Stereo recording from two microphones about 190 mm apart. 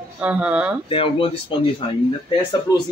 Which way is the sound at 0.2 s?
5° right (ahead or behind).